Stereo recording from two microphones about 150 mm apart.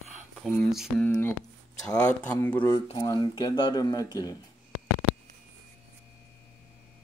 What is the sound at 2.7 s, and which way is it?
Speech, 25° left (ahead or behind).